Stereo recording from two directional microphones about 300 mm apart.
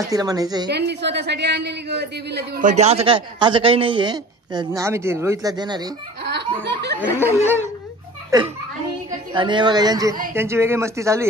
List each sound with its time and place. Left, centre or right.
0.1 s a man's voice: centre
0.7 s speech: right
2.7 s a man's voice: right
6.2 s speech: right
7.2 s a man's voice: centre